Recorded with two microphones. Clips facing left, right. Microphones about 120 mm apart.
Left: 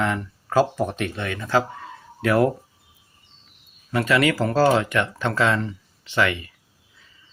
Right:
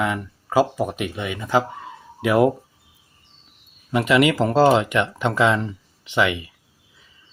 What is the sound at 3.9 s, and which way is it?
Speech, 20° right (ahead or behind).